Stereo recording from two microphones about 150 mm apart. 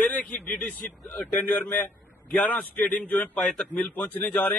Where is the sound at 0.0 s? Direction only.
10° left (ahead or behind).